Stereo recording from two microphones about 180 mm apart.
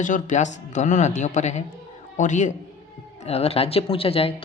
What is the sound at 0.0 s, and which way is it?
Speech, 45° left (ahead or behind).